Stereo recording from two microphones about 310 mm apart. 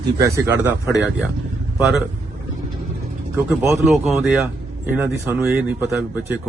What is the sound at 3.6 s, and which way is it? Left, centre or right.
A man's voice, centre.